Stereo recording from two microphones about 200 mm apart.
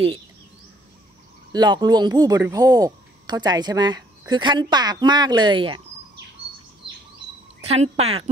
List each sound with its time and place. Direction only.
1.5 s speech: 20° right (ahead or behind)
7.6 s speech: 30° right (ahead or behind)